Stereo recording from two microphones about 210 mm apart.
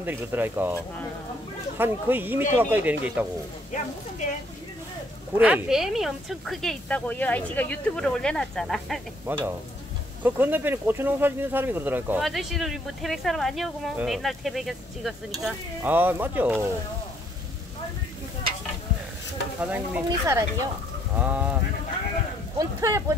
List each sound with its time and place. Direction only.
0.0 s speech: 10° right (ahead or behind)
1.8 s speech: 10° right (ahead or behind)
3.7 s speech: 35° left (ahead or behind)
5.4 s speech: 5° right (ahead or behind)
9.3 s speech: 10° right (ahead or behind)
19.6 s speech: 5° right (ahead or behind)
22.6 s speech: 15° right (ahead or behind)